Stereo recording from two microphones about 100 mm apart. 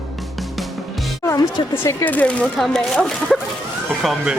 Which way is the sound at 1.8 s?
15° left (ahead or behind).